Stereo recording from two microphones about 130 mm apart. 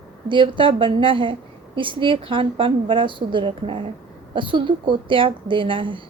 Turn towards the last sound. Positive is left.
turn(degrees=-40)  # may be behind; listen again after turning